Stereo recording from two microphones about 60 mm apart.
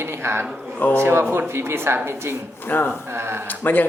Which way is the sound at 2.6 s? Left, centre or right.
Left.